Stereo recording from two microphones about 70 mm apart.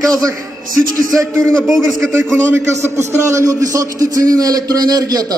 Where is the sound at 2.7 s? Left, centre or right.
Right.